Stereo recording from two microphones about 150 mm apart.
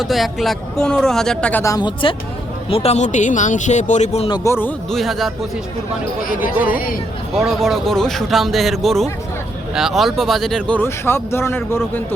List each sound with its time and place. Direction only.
0.0 s speech: centre (ahead or behind)
1.6 s speech: 25° left (ahead or behind)
2.6 s speech: 40° left (ahead or behind)
4.4 s a man's voice: 15° left (ahead or behind)
4.9 s speech: centre (ahead or behind)
6.7 s speech: 70° left (ahead or behind)
7.3 s speech: centre (ahead or behind); by 11.8 s 15° left (ahead or behind)